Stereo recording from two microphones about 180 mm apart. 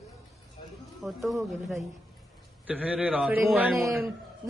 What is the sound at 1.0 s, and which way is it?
A man's voice, centre (ahead or behind).